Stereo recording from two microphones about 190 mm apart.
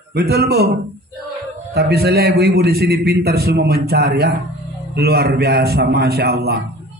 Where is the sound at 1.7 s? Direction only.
55° right (ahead or behind).